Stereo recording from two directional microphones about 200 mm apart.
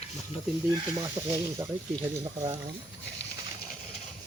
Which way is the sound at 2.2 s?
20° right (ahead or behind).